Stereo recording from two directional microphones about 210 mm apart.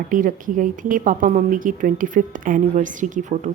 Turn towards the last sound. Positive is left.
turn(degrees=-35)  # may be behind; listen again after turning